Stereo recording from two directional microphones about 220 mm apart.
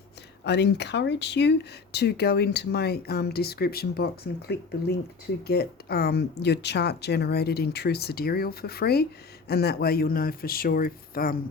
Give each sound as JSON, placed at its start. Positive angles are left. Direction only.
{"t": 0.4, "sound": "speech", "side_deg": 50}